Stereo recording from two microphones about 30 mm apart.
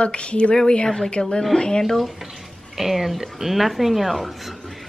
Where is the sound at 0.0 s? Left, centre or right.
Left.